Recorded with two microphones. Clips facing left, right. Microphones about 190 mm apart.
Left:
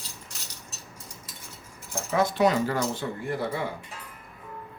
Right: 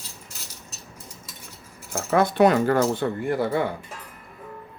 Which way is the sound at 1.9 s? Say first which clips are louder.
Right 4 dB; 60° right (ahead or behind).